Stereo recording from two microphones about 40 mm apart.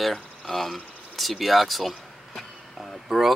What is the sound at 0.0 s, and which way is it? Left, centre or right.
Speech, centre.